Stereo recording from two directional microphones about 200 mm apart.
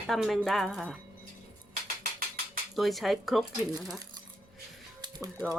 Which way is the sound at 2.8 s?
Centre (ahead or behind).